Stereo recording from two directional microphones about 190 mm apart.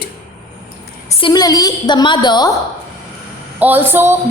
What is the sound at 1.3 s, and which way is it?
A woman's voice, 20° left (ahead or behind).